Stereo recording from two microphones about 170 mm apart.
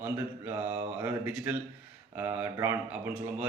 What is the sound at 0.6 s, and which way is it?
Mantra, 40° right (ahead or behind).